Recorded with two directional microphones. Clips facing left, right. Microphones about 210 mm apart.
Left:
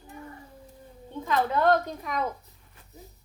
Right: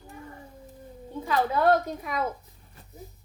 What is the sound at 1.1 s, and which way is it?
A woman's voice, 10° right (ahead or behind).